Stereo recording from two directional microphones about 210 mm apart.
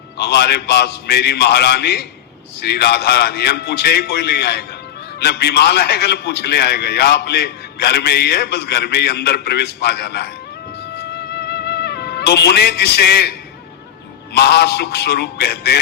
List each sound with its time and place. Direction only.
0.2 s a man's voice: 50° left (ahead or behind)
10.9 s music: 50° left (ahead or behind)
14.3 s a man's voice: 50° left (ahead or behind)